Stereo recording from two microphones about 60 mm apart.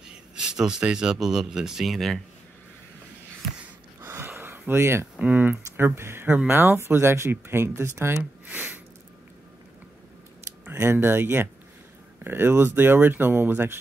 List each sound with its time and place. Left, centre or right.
0.1 s speech: centre
4.0 s a sound: right
5.2 s speech: right
5.8 s speech: right
8.2 s a sound: right
10.8 s speech: right